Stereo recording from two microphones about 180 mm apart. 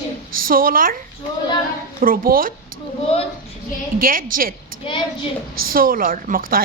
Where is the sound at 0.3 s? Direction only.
50° right (ahead or behind).